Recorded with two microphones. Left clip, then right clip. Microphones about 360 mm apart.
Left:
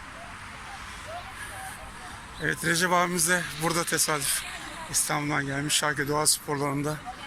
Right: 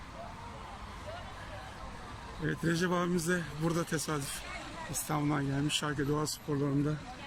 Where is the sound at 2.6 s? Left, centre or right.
Centre.